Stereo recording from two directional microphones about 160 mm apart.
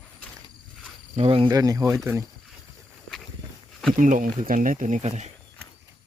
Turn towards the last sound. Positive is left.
turn(degrees=-45)  # may be behind; listen again after turning